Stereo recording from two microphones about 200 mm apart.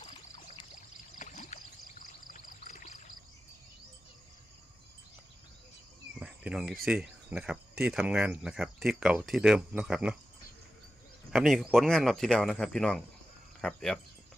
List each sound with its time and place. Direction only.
0.0 s pour: 25° left (ahead or behind)
1.2 s a sound: 40° left (ahead or behind)
2.0 s pour: 40° left (ahead or behind)
6.1 s speech: 5° right (ahead or behind)
11.3 s speech: centre (ahead or behind)